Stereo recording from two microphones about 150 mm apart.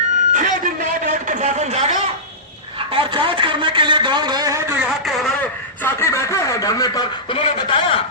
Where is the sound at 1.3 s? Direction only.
50° right (ahead or behind).